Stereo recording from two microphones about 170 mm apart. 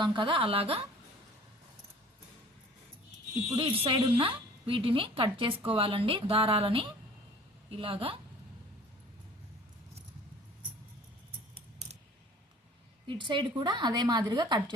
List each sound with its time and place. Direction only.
0.0 s a woman's voice: 30° right (ahead or behind)
3.5 s a woman's voice: 35° right (ahead or behind)
13.1 s a woman's voice: 25° right (ahead or behind)